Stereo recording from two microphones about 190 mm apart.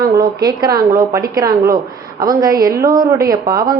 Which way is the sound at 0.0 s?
20° right (ahead or behind).